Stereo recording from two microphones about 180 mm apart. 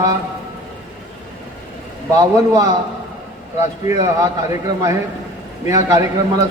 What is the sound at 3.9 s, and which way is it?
Speech, 20° right (ahead or behind).